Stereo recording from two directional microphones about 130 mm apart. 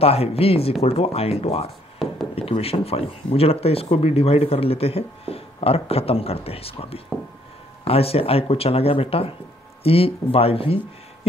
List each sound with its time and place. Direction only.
0.0 s speech: 50° left (ahead or behind)